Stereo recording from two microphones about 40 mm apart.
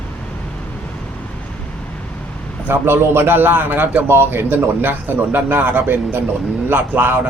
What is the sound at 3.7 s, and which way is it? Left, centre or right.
Speech, right.